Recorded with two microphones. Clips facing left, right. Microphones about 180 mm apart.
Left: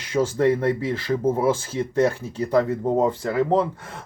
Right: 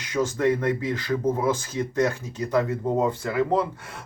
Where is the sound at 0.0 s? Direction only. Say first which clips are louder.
Left 3 dB; 30° left (ahead or behind).